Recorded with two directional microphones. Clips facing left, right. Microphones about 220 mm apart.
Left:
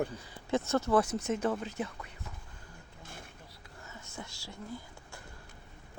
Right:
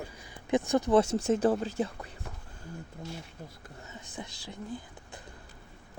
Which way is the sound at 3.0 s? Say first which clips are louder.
Right 7 dB; 50° left (ahead or behind).